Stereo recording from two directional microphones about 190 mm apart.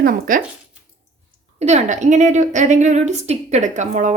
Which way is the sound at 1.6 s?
35° right (ahead or behind).